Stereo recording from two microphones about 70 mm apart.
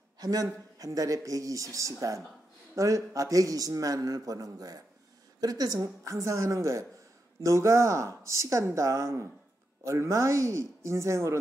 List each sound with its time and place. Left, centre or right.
0.2 s a man's voice: right
6.0 s speech: right